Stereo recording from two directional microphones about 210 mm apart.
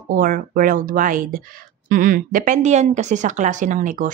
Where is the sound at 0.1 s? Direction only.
40° right (ahead or behind).